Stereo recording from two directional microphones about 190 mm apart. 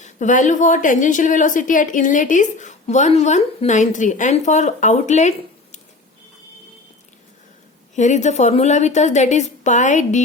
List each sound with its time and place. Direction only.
0.0 s a woman's voice: 40° left (ahead or behind)
7.9 s a woman's voice: 40° left (ahead or behind)